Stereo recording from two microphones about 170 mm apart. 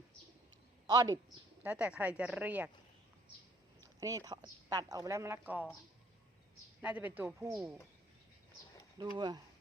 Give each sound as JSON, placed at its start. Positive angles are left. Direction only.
{"t": 0.9, "sound": "speech", "side_deg": -25}
{"t": 1.6, "sound": "speech", "side_deg": -10}
{"t": 4.0, "sound": "speech", "side_deg": -20}
{"t": 6.8, "sound": "speech", "side_deg": -10}
{"t": 9.1, "sound": "speech", "side_deg": -25}